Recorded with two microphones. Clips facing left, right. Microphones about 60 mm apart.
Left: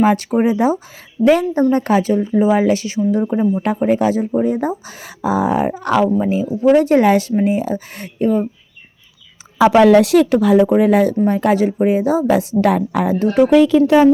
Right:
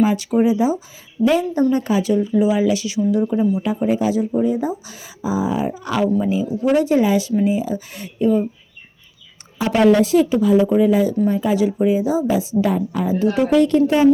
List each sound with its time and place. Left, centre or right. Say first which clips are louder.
0.0 s a woman's voice: left 2 dB; left
3.5 s speech: left 3 dB; left
6.2 s a woman's voice: left 4 dB; left
6.7 s speech: left 2 dB; left
9.6 s a woman's voice: left 5 dB; left
13.1 s speech: even; left
13.8 s speech: left 4 dB; left